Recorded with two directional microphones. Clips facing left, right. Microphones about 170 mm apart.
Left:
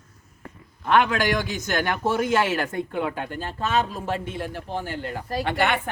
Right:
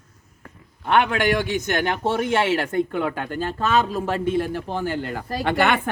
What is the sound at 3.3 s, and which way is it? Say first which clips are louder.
A man's voice: right 5 dB; 90° right.